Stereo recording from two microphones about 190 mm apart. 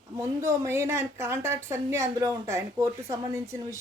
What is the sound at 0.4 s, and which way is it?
Speech, 15° right (ahead or behind).